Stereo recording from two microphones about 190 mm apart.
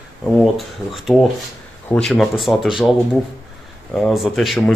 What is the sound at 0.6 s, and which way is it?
Speech, centre (ahead or behind).